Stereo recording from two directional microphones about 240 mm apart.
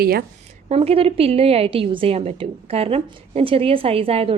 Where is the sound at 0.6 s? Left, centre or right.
Right.